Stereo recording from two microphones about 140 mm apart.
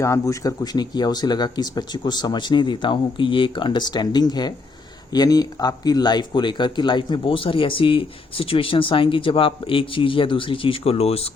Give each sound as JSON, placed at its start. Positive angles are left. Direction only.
{"t": 0.0, "sound": "speech", "side_deg": 20}